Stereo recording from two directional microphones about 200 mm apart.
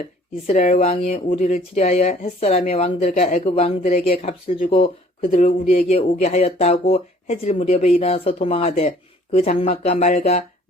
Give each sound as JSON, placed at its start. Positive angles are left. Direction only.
{"t": 0.4, "sound": "speech", "side_deg": 40}
{"t": 5.3, "sound": "speech", "side_deg": 40}